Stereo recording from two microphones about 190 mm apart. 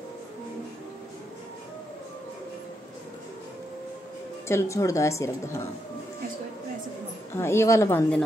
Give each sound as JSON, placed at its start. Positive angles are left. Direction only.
{"t": 4.5, "sound": "a woman's voice", "side_deg": 15}
{"t": 7.3, "sound": "a woman's voice", "side_deg": 15}